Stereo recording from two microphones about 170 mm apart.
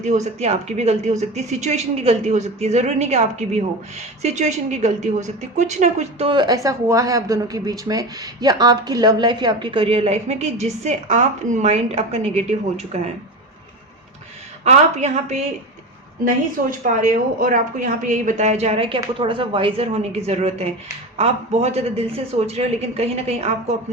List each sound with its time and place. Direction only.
0.0 s a woman's voice: 45° right (ahead or behind)
14.6 s a woman's voice: 40° right (ahead or behind)
16.8 s a woman's voice: 50° right (ahead or behind)